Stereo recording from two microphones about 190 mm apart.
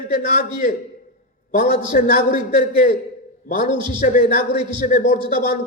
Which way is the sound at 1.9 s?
50° left (ahead or behind).